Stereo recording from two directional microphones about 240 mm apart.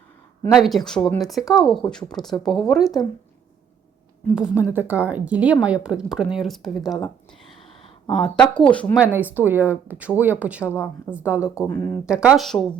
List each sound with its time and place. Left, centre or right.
0.5 s speech: centre
4.4 s speech: centre
8.0 s speech: left
8.7 s speech: centre
9.0 s speech: centre